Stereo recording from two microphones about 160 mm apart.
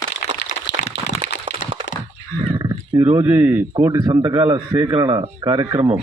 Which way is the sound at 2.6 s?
25° right (ahead or behind).